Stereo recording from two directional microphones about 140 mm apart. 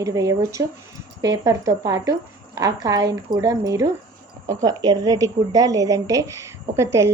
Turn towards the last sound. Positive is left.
turn(degrees=-20)  # may be behind; listen again after turning